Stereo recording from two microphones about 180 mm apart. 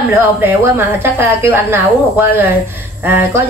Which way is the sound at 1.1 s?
10° right (ahead or behind).